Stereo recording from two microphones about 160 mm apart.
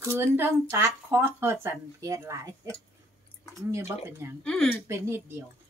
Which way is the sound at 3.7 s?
15° right (ahead or behind).